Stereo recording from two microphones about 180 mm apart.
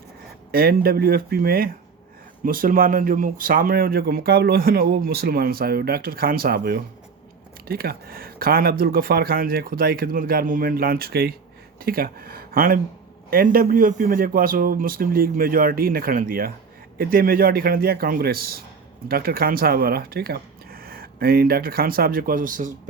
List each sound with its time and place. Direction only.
0.5 s speech: 55° right (ahead or behind)